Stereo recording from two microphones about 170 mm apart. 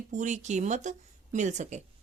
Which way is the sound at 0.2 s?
45° right (ahead or behind).